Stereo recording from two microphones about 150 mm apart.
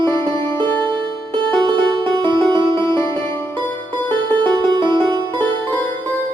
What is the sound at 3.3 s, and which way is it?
Music, 15° left (ahead or behind).